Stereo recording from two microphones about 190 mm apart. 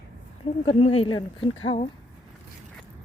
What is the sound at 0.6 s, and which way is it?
Speech, 30° left (ahead or behind).